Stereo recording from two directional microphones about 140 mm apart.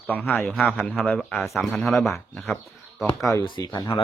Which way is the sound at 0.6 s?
10° left (ahead or behind).